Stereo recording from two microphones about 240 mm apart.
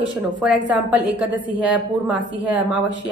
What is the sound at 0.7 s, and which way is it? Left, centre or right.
Speech, centre.